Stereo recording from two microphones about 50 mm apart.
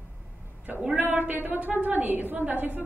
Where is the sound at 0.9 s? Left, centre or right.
Right.